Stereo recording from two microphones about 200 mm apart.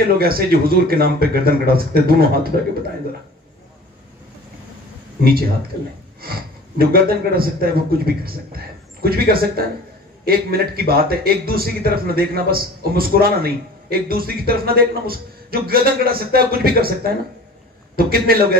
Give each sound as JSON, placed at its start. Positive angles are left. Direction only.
{"t": 0.1, "sound": "a man's voice", "side_deg": -50}
{"t": 6.8, "sound": "a man's voice", "side_deg": -50}